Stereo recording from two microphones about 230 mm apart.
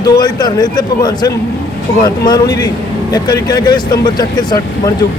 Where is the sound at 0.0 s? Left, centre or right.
Centre.